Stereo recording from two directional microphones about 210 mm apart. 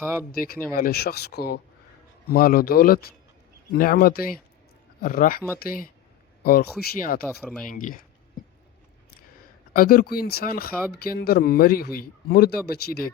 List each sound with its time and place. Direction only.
0.3 s a man's voice: 45° left (ahead or behind)
9.7 s a man's voice: 45° left (ahead or behind)